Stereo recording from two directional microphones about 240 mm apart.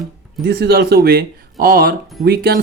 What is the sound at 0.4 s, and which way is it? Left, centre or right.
Speech, right.